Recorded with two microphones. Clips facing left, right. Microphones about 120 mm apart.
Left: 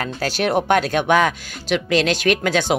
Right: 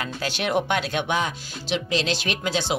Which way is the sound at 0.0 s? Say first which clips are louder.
Left 6 dB; 45° left (ahead or behind).